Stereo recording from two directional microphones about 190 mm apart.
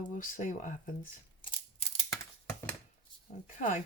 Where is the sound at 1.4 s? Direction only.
30° left (ahead or behind).